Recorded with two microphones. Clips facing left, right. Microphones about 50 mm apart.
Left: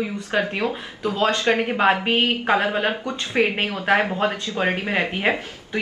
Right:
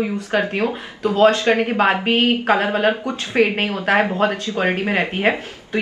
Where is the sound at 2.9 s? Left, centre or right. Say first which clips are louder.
Right 5 dB; right.